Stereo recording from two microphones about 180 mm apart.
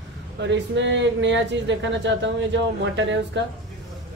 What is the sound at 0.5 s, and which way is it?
Speech, 90° right.